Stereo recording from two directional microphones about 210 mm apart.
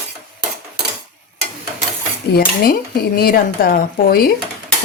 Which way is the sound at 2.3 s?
45° left (ahead or behind).